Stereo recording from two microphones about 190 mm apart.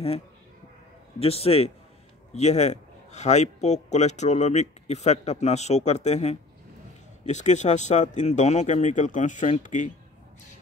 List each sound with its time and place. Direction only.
1.2 s a man's voice: 30° left (ahead or behind)